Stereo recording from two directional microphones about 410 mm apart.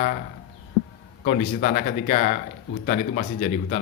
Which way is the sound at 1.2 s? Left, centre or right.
Centre.